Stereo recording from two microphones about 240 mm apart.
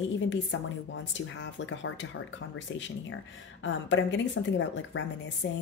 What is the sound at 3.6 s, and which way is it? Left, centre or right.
A woman's voice, left.